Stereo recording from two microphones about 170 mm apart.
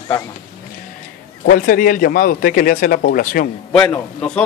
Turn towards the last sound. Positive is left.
turn(degrees=5)  # may be behind; listen again after turning